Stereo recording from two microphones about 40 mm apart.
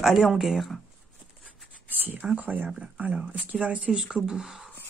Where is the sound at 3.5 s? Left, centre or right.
Right.